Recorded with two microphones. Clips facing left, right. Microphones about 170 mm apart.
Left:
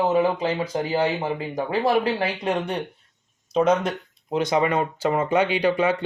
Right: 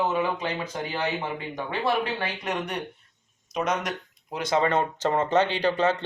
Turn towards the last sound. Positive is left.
turn(degrees=10)  # may be behind; listen again after turning